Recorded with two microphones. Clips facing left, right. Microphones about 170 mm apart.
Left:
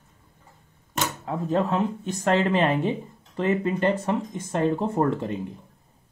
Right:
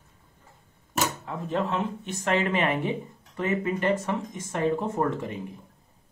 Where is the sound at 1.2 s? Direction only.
40° left (ahead or behind).